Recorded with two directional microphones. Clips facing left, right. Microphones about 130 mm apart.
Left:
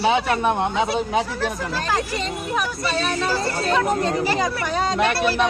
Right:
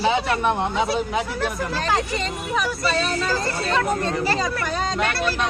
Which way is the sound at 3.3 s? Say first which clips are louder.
Left 2 dB; 15° left (ahead or behind).